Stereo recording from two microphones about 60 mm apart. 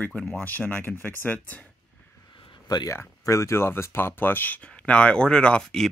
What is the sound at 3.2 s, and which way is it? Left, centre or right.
Speech, left.